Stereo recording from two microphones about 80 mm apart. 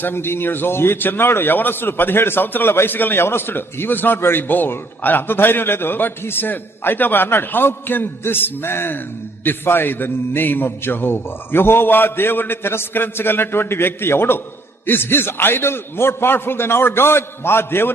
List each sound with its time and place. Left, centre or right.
0.0 s a man's voice: left